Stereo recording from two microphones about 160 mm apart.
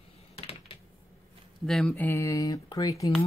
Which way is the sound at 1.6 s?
5° left (ahead or behind).